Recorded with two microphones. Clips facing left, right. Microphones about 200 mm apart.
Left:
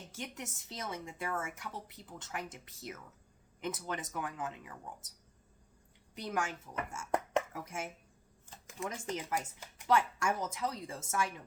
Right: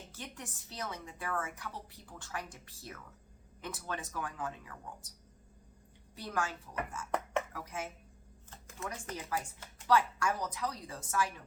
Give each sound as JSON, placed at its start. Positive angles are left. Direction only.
{"t": 0.3, "sound": "speech", "side_deg": 20}
{"t": 6.1, "sound": "speech", "side_deg": 20}
{"t": 7.5, "sound": "speech", "side_deg": 25}
{"t": 8.4, "sound": "speech", "side_deg": 15}